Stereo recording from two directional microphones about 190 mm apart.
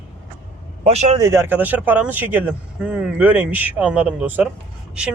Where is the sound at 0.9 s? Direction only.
30° right (ahead or behind).